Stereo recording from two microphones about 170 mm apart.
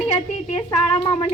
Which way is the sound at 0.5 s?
25° left (ahead or behind).